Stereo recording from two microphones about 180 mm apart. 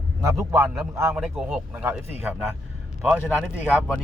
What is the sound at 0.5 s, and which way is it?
Speech, 15° right (ahead or behind).